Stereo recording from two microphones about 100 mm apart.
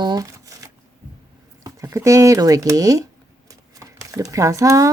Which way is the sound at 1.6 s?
30° right (ahead or behind).